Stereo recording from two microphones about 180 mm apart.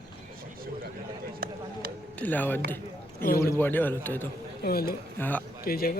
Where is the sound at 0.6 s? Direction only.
55° right (ahead or behind).